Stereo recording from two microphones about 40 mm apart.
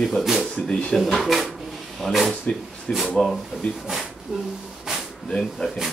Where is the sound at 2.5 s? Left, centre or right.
Left.